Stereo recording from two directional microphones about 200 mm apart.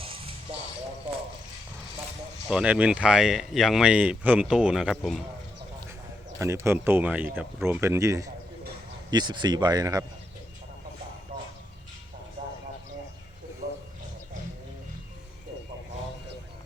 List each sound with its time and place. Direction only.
0.0 s music: 25° right (ahead or behind)
2.5 s speech: 5° right (ahead or behind)
6.4 s speech: 15° right (ahead or behind)